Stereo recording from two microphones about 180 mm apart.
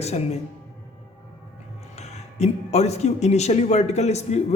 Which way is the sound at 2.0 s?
35° left (ahead or behind).